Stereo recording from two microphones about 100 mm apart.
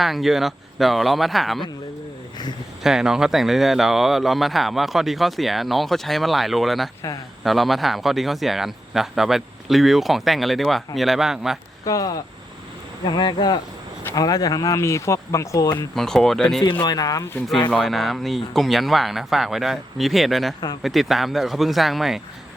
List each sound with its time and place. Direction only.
0.0 s speech: centre (ahead or behind)
2.8 s speech: 5° right (ahead or behind)
11.9 s speech: 35° left (ahead or behind)
16.0 s speech: 5° left (ahead or behind)
16.8 s speech: 40° left (ahead or behind)
17.7 s speech: 5° left (ahead or behind)